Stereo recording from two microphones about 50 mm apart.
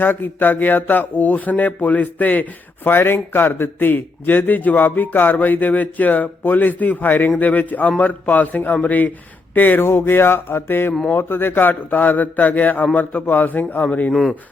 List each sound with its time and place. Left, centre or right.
0.0 s a man's voice: left
2.9 s a man's voice: left
10.0 s a sound: left
11.1 s a man's voice: left
14.1 s a man's voice: centre